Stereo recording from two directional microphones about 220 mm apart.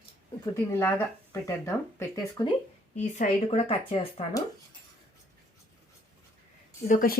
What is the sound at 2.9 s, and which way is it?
Speech, 30° left (ahead or behind).